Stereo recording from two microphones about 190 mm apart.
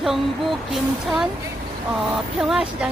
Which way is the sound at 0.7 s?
Centre (ahead or behind).